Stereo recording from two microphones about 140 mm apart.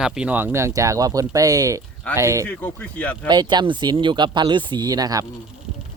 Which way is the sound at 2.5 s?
10° left (ahead or behind).